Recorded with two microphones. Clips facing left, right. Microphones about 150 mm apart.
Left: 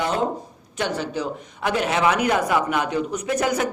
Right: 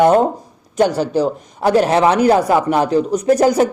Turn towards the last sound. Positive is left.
turn(degrees=-35)  # may be behind; listen again after turning